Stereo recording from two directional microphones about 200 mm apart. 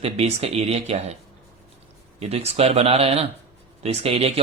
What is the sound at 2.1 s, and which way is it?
Speech, 30° right (ahead or behind).